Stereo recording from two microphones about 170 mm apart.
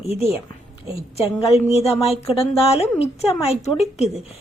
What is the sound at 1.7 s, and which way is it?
Speech, 35° left (ahead or behind).